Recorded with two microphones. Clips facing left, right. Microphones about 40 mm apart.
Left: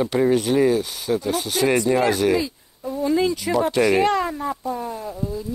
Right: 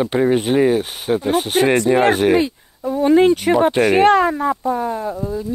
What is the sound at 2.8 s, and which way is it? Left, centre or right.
Speech, right.